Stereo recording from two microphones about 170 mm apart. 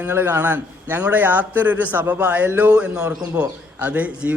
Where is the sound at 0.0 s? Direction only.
15° right (ahead or behind).